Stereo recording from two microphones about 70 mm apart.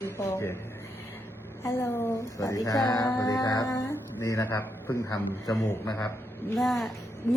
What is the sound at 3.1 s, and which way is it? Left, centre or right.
Speech, left.